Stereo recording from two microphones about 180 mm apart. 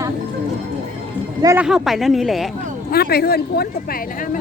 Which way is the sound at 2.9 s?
60° left (ahead or behind).